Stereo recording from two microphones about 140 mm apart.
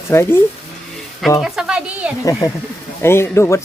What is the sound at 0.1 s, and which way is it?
Speech, 15° left (ahead or behind).